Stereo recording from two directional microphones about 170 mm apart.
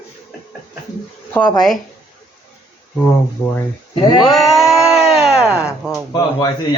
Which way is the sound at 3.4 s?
15° left (ahead or behind).